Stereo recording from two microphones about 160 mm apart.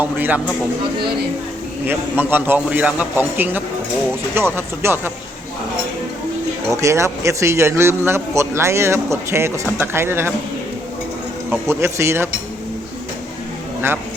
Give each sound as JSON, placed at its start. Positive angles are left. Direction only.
{"t": 0.0, "sound": "a man's voice", "side_deg": -10}
{"t": 1.9, "sound": "a man's voice", "side_deg": -10}
{"t": 6.7, "sound": "a man's voice", "side_deg": -20}
{"t": 11.7, "sound": "a man's voice", "side_deg": -15}